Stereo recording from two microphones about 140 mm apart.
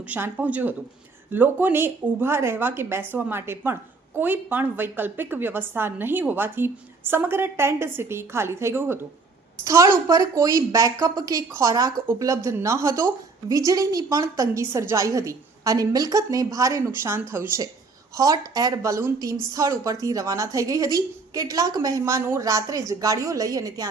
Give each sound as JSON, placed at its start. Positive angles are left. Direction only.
{"t": 0.1, "sound": "a woman's voice", "side_deg": -10}